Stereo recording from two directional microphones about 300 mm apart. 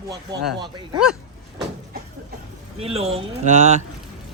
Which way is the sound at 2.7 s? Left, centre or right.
Centre.